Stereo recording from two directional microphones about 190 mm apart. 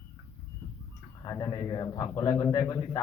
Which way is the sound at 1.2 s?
20° left (ahead or behind).